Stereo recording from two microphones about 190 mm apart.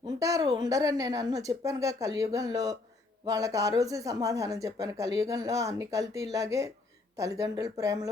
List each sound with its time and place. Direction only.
0.0 s speech: 20° right (ahead or behind)